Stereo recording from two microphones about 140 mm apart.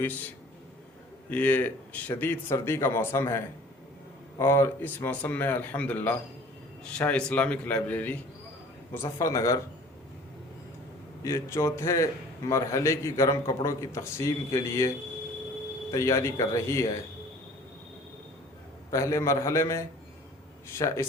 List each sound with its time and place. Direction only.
0.0 s speech: 15° left (ahead or behind)
1.3 s a man's voice: 10° left (ahead or behind)
11.2 s a man's voice: 20° left (ahead or behind)
18.9 s a man's voice: 20° left (ahead or behind)